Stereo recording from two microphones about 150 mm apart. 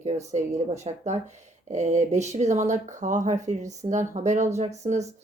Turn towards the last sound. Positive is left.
turn(degrees=-50)  # may be behind; listen again after turning